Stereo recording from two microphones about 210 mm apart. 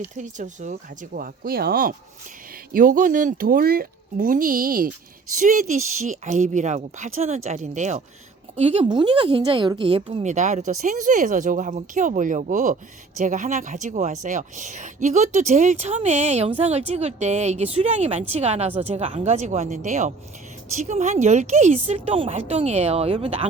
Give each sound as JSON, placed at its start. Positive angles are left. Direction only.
{"t": 0.2, "sound": "speech", "side_deg": -35}